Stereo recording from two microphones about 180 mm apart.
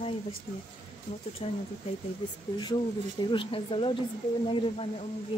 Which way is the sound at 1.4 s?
35° left (ahead or behind).